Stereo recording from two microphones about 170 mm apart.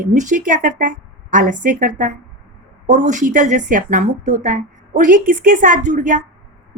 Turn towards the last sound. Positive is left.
turn(degrees=-50)  # may be behind; listen again after turning